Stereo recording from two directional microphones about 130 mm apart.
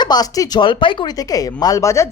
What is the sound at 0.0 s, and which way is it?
Speech, 30° left (ahead or behind).